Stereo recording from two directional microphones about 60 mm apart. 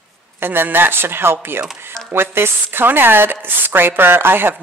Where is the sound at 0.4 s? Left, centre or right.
Right.